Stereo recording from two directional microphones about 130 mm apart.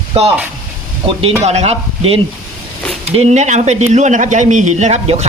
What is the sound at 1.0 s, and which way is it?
Speech, 50° right (ahead or behind).